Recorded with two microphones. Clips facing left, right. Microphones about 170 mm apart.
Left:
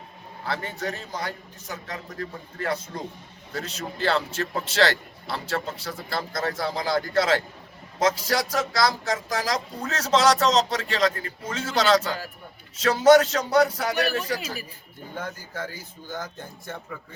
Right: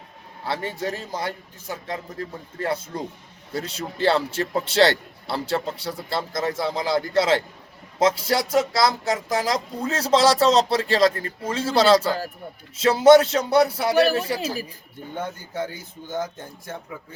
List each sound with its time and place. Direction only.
0.4 s a man's voice: 30° right (ahead or behind)